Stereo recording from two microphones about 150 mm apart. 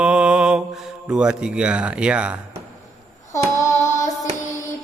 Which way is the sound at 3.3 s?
20° left (ahead or behind).